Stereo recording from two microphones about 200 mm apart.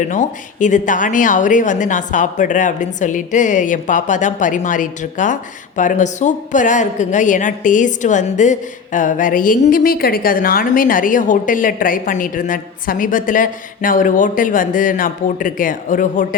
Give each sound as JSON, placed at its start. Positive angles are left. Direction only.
{"t": 0.0, "sound": "a woman's voice", "side_deg": 40}